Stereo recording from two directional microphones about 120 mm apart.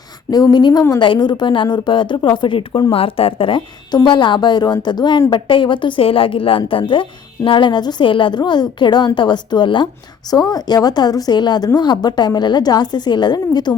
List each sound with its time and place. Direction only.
0.3 s a woman's voice: 35° left (ahead or behind)